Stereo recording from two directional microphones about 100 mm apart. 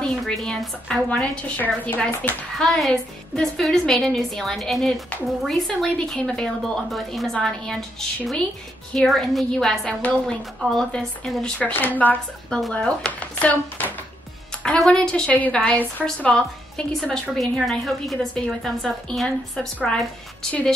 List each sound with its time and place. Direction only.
0.0 s a woman's voice: 5° left (ahead or behind)
8.9 s a woman's voice: centre (ahead or behind); by 12.2 s 15° left (ahead or behind)
12.4 s a woman's voice: 5° left (ahead or behind)